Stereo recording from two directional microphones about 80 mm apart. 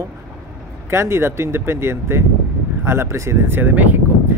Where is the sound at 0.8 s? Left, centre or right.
Right.